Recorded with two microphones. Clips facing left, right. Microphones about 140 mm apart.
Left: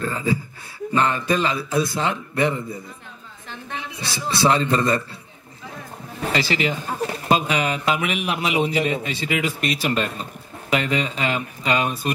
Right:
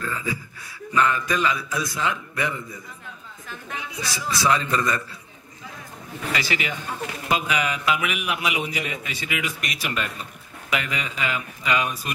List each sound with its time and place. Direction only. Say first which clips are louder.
0.0 s a man's voice: left 6 dB; 30° left (ahead or behind)
6.2 s a man's voice: left 5 dB; 30° left (ahead or behind)